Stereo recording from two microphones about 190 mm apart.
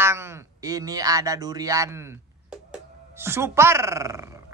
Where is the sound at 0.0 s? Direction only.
15° right (ahead or behind).